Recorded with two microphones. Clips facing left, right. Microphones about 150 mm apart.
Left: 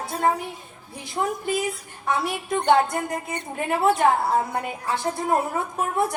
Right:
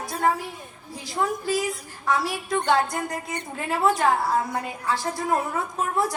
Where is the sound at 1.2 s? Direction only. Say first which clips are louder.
Even; 25° left (ahead or behind).